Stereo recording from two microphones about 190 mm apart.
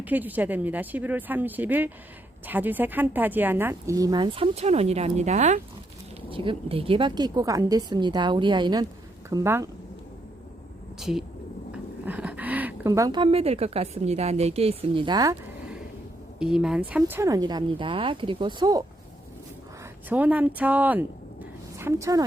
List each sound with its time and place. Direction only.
0.0 s speech: 10° right (ahead or behind)
11.0 s speech: centre (ahead or behind); by 15.4 s 20° right (ahead or behind)
16.4 s speech: 5° right (ahead or behind); by 18.9 s 20° right (ahead or behind)
20.1 s a woman's voice: 10° right (ahead or behind)